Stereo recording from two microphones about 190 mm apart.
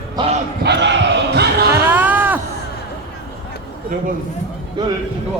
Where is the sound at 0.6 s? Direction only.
65° right (ahead or behind).